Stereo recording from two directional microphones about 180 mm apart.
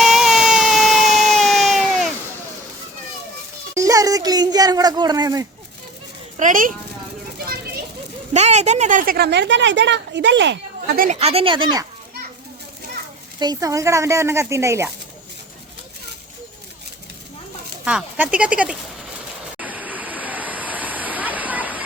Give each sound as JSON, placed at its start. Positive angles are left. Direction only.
{"t": 0.0, "sound": "a sound", "side_deg": 0}
{"t": 3.8, "sound": "a sound", "side_deg": -20}
{"t": 6.3, "sound": "a child's voice", "side_deg": -45}
{"t": 8.3, "sound": "a woman's voice", "side_deg": -40}
{"t": 11.2, "sound": "speech", "side_deg": -35}
{"t": 13.4, "sound": "a woman's voice", "side_deg": -20}
{"t": 17.8, "sound": "a woman's voice", "side_deg": -5}
{"t": 19.5, "sound": "vehicle", "side_deg": -10}